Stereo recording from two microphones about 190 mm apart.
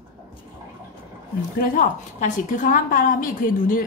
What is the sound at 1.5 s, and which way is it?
A woman's voice, 40° left (ahead or behind).